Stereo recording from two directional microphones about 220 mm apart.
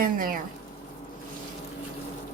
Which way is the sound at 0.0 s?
40° right (ahead or behind).